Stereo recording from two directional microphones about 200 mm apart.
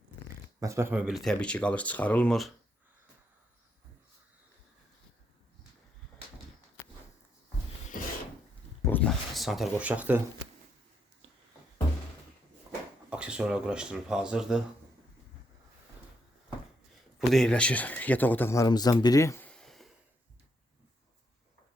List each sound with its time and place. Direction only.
0.6 s speech: 15° right (ahead or behind); by 2.5 s 5° left (ahead or behind)
7.9 s filing: 45° left (ahead or behind)
8.8 s a sound: 10° left (ahead or behind); by 10.2 s 5° right (ahead or behind)
13.1 s speech: 5° right (ahead or behind)
17.2 s a man's voice: centre (ahead or behind)